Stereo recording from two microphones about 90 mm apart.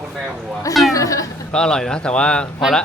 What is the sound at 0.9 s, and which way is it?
Speech, 40° left (ahead or behind).